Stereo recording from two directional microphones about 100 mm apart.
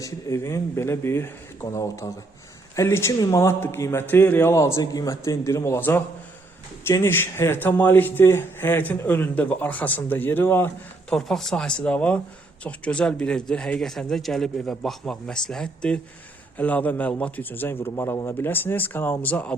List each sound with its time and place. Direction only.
0.0 s speech: 30° left (ahead or behind)
7.0 s speech: 25° left (ahead or behind)
11.1 s a man's voice: 5° left (ahead or behind)